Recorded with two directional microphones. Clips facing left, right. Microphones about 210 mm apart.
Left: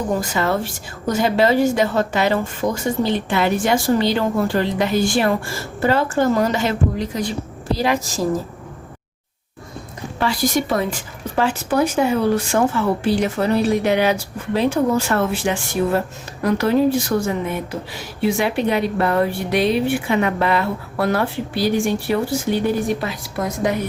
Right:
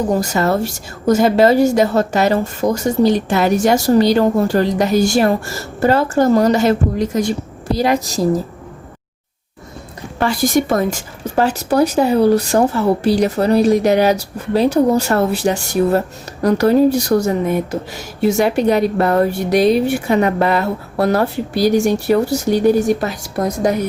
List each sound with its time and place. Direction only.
0.2 s a woman's voice: 40° right (ahead or behind)
10.2 s a woman's voice: 50° right (ahead or behind)